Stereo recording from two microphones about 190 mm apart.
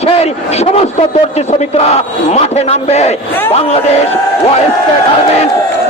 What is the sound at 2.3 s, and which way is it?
Speech, 35° left (ahead or behind).